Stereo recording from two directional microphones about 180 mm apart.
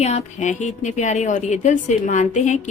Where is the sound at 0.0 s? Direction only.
40° left (ahead or behind).